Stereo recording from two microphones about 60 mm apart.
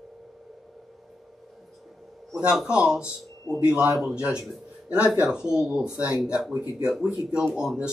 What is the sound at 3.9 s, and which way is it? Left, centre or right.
Speech, centre.